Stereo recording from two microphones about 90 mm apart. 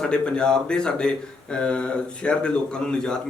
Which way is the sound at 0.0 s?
10° left (ahead or behind).